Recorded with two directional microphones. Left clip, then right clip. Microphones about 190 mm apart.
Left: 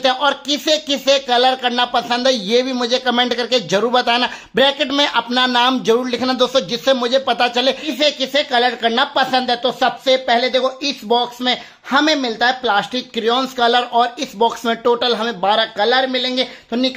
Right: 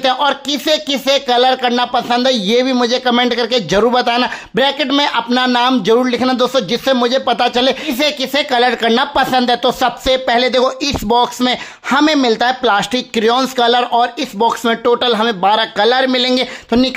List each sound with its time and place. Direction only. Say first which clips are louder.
0.0 s speech: right 2 dB; 20° right (ahead or behind)